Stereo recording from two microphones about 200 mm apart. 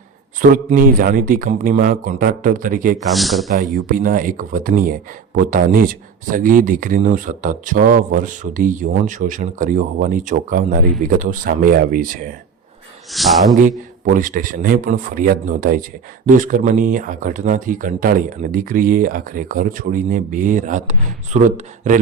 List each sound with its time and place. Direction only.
0.5 s speech: 45° right (ahead or behind)
3.1 s speech: centre (ahead or behind)
3.8 s speech: 45° right (ahead or behind)
13.1 s speech: centre (ahead or behind)
13.6 s speech: 40° right (ahead or behind)